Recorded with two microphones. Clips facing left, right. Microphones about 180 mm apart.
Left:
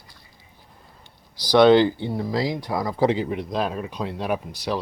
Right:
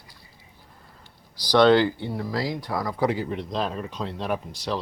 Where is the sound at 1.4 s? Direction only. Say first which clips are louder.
Left 3 dB; 15° left (ahead or behind).